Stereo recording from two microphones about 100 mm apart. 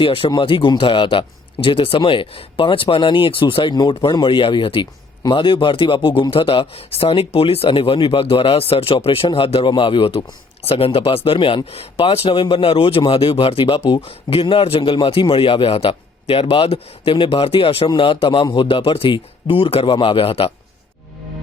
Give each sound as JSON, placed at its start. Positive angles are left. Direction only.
{"t": 0.0, "sound": "a man's voice", "side_deg": 65}
{"t": 10.6, "sound": "a man's voice", "side_deg": 70}
{"t": 11.6, "sound": "a man's voice", "side_deg": 85}
{"t": 17.8, "sound": "speech", "side_deg": 55}
{"t": 18.4, "sound": "a man's voice", "side_deg": 50}
{"t": 18.8, "sound": "speech", "side_deg": 65}